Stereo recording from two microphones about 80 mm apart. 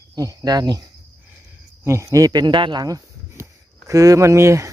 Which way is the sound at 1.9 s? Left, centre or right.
Right.